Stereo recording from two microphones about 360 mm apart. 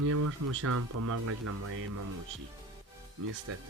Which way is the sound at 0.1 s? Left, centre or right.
Right.